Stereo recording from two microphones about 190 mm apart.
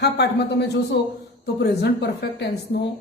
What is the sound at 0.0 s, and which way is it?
Speech, 60° left (ahead or behind).